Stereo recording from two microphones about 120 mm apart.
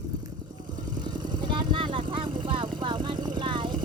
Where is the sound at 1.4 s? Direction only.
40° right (ahead or behind).